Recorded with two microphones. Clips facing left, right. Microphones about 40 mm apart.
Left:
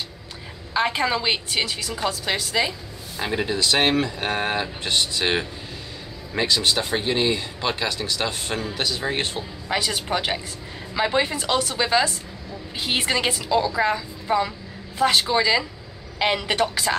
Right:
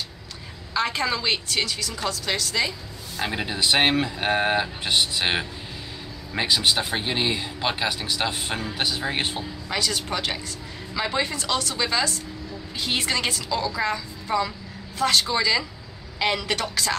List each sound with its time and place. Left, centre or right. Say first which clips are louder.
0.7 s a woman's voice: left 3 dB; centre
3.2 s a man's voice: left 3 dB; centre
3.5 s speech: even; centre
9.7 s a woman's voice: left 3 dB; centre